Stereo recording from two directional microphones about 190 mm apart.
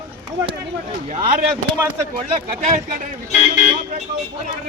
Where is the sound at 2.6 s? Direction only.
40° right (ahead or behind).